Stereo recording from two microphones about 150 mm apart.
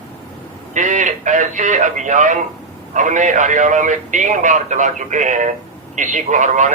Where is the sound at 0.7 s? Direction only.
55° right (ahead or behind).